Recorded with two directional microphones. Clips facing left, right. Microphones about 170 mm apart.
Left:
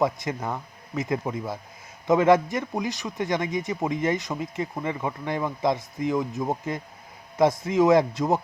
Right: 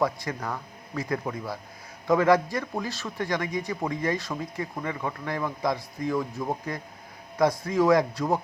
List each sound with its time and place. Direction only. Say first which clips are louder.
0.0 s a man's voice: left 2 dB; 20° left (ahead or behind)